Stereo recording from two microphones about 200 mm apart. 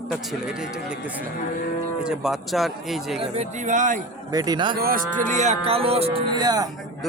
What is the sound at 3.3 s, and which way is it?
Speech, 35° right (ahead or behind).